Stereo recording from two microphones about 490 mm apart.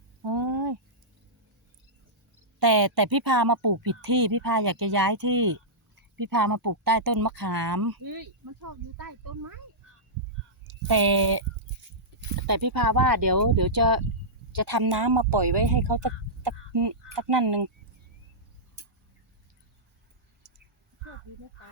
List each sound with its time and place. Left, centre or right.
0.2 s a sound: right
2.6 s speech: right
10.7 s speech: right